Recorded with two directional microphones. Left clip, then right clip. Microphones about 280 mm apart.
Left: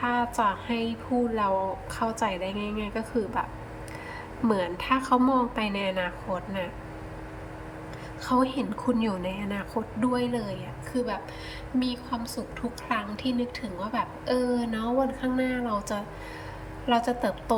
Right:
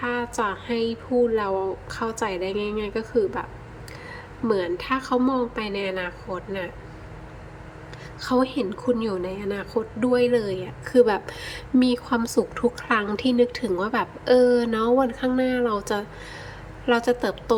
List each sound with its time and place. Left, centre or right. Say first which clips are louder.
0.0 s a woman's voice: even; centre
4.4 s a woman's voice: right 2 dB; centre
8.2 s a woman's voice: right 3 dB; centre